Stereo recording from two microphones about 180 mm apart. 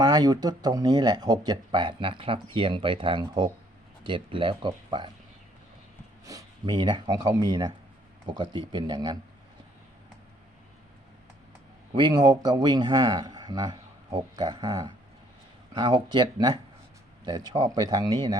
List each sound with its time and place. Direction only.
0.0 s speech: 20° right (ahead or behind)
6.2 s speech: 20° right (ahead or behind)
11.9 s speech: 25° right (ahead or behind)